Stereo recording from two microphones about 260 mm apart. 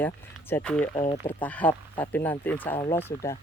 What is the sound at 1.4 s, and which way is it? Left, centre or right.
Speech, centre.